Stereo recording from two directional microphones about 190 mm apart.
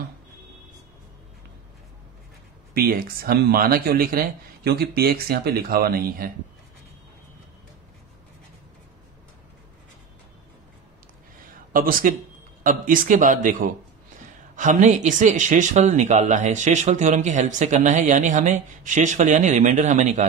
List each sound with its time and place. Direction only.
2.7 s speech: 55° right (ahead or behind)
11.7 s speech: 50° right (ahead or behind)